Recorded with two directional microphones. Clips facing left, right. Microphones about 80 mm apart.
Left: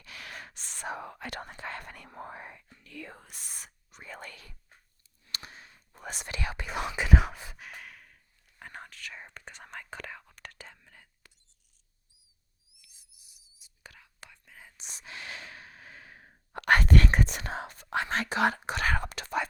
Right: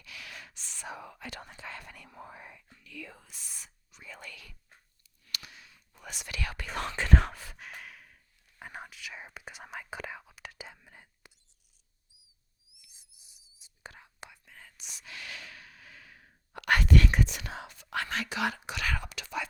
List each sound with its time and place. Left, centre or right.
0.0 s whispering: left; by 11.3 s centre
12.7 s whispering: right
14.8 s sigh: left
17.8 s whispering: left
18.1 s whispering: left